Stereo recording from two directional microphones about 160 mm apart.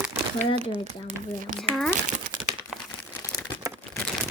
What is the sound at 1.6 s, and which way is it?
Speech, 5° left (ahead or behind).